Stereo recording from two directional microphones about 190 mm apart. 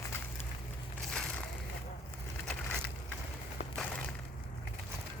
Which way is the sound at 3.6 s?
35° left (ahead or behind).